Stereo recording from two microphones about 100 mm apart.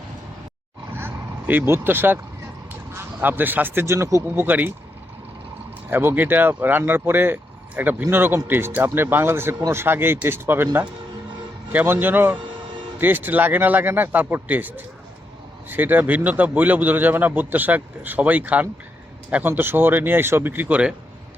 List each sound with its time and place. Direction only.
0.9 s vehicle: 20° right (ahead or behind)
2.9 s speech: 20° right (ahead or behind)
5.9 s a man's voice: 20° right (ahead or behind)